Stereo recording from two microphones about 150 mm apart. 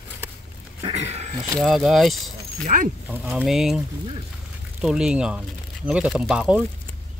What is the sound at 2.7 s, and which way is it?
Speech, 60° right (ahead or behind).